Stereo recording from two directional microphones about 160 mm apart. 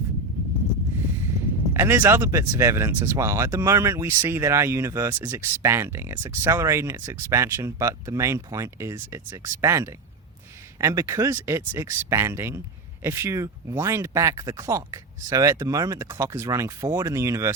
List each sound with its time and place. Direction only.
1.7 s speech: 15° right (ahead or behind)